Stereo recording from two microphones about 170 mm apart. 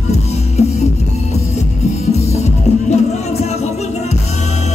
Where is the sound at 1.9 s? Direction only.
40° left (ahead or behind).